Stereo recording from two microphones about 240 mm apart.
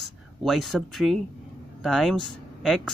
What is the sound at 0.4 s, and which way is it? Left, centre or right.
Speech, centre.